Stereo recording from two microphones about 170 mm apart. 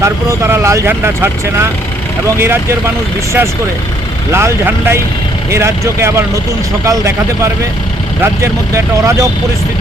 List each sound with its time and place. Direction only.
0.0 s speech: 15° right (ahead or behind)
4.3 s speech: 15° right (ahead or behind)